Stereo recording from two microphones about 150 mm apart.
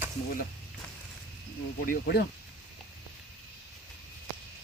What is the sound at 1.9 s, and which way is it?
Speech, 90° left.